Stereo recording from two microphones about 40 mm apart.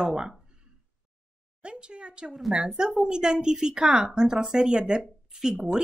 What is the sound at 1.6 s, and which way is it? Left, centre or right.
A woman's voice, right.